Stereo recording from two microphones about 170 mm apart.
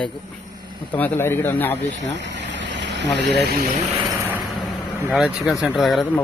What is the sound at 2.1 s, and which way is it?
Speech, 90° right.